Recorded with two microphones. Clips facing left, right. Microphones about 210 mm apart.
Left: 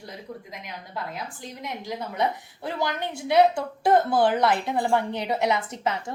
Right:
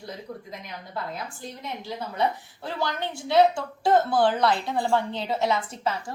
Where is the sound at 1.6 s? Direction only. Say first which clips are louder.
Left 2 dB; 15° left (ahead or behind).